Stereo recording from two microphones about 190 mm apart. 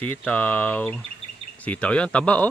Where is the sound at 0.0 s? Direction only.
10° left (ahead or behind).